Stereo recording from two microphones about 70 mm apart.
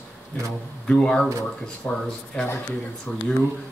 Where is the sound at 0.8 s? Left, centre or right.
Centre.